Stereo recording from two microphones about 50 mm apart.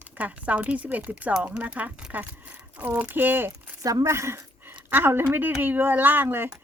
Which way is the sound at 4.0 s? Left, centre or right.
Right.